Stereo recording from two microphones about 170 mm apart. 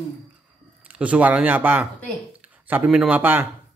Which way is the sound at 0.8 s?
10° right (ahead or behind).